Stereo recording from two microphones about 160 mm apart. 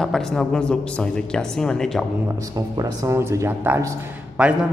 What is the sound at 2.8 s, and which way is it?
Speech, 20° right (ahead or behind).